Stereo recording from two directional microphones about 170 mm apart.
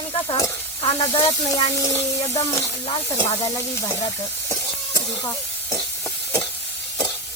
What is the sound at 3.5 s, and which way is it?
Speech, 15° left (ahead or behind).